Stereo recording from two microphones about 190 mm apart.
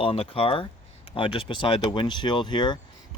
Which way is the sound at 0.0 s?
30° left (ahead or behind).